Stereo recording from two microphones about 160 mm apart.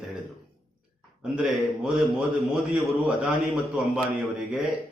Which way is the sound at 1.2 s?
5° right (ahead or behind).